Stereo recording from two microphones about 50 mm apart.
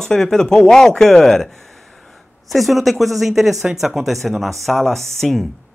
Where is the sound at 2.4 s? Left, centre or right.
Centre.